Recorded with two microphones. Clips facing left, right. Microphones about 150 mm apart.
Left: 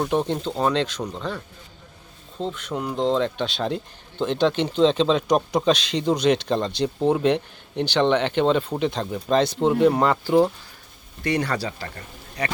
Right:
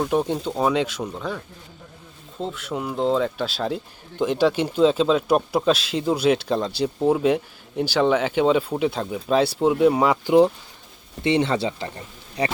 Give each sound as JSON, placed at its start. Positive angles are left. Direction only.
{"t": 0.0, "sound": "speech", "side_deg": -5}
{"t": 2.4, "sound": "speech", "side_deg": -5}